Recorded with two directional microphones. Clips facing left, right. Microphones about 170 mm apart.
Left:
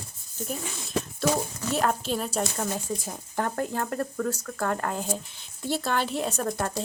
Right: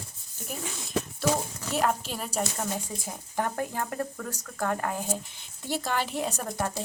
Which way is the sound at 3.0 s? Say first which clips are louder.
Left 1 dB; 15° right (ahead or behind).